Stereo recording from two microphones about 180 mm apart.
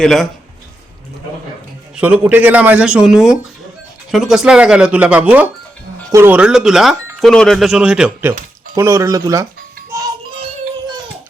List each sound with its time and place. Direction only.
0.0 s speech: centre (ahead or behind)
2.0 s speech: 10° right (ahead or behind)
9.9 s music: 15° right (ahead or behind)
10.3 s music: 30° right (ahead or behind)